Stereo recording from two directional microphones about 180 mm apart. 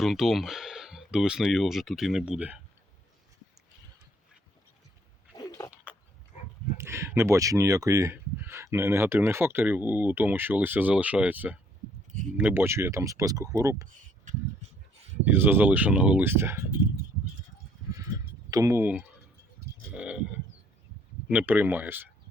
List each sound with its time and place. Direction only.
0.0 s speech: centre (ahead or behind)
5.4 s a sound: 20° left (ahead or behind)
6.7 s speech: 15° right (ahead or behind)
15.2 s speech: 10° right (ahead or behind)
18.5 s speech: 15° right (ahead or behind)
21.2 s speech: 10° right (ahead or behind)